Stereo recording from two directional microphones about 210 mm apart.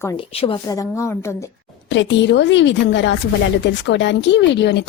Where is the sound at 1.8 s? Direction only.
60° left (ahead or behind).